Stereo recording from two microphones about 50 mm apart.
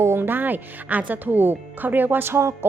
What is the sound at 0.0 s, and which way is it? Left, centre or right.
Music, right.